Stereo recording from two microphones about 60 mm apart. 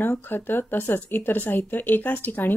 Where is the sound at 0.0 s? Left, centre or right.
Left.